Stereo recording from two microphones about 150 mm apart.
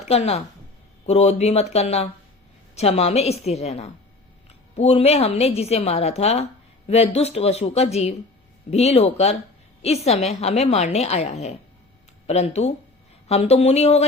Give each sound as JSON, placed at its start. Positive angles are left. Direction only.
{"t": 0.1, "sound": "a woman's voice", "side_deg": 45}